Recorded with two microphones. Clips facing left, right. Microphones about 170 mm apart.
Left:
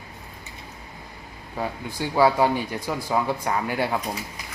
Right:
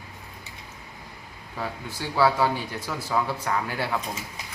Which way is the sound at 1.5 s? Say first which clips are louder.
Left 4 dB; 15° left (ahead or behind).